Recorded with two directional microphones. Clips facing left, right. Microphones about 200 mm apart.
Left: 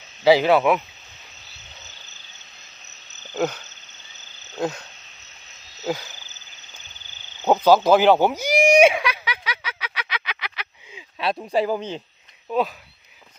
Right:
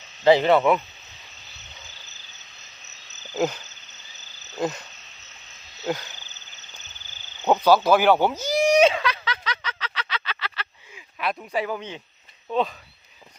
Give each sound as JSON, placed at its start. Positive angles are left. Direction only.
{"t": 0.3, "sound": "speech", "side_deg": 5}
{"t": 3.3, "sound": "a sound", "side_deg": -5}
{"t": 4.5, "sound": "frog", "side_deg": -5}
{"t": 5.8, "sound": "speech", "side_deg": 5}
{"t": 7.4, "sound": "a sound", "side_deg": 10}
{"t": 11.2, "sound": "speech", "side_deg": 30}
{"t": 12.5, "sound": "frog", "side_deg": 5}